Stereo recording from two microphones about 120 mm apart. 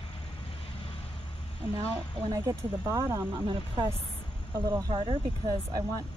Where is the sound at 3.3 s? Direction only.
45° right (ahead or behind).